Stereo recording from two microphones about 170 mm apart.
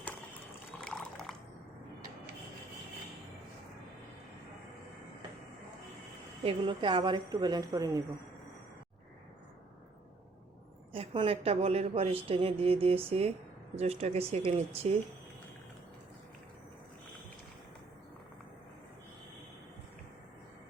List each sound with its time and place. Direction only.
0.8 s liquid: 5° left (ahead or behind)
6.4 s a woman's voice: 30° right (ahead or behind)
10.9 s a woman's voice: 30° right (ahead or behind)